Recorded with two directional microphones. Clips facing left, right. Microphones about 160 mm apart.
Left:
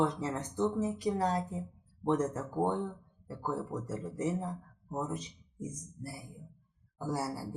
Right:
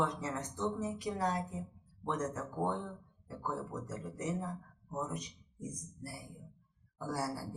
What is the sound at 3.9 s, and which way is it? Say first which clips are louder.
A man's voice: left 5 dB; 30° left (ahead or behind).